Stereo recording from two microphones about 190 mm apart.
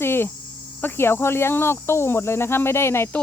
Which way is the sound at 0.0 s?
10° left (ahead or behind).